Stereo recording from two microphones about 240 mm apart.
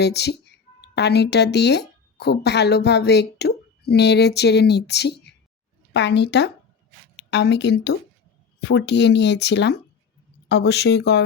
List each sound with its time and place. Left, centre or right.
0.0 s speech: left